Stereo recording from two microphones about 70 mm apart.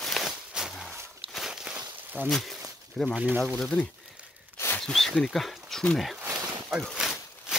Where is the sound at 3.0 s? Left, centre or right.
Centre.